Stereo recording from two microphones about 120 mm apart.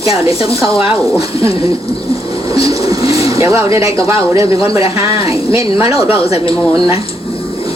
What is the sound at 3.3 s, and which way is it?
Speech, 25° right (ahead or behind).